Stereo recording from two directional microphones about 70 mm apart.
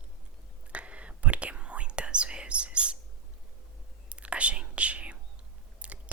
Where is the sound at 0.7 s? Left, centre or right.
Centre.